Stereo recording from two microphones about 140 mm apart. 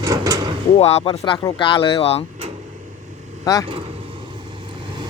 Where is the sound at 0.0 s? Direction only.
25° right (ahead or behind).